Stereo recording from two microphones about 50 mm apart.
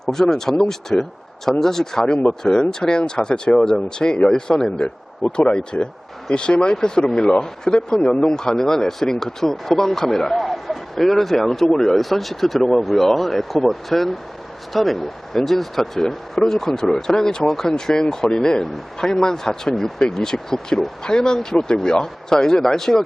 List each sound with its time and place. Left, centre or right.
0.0 s speech: centre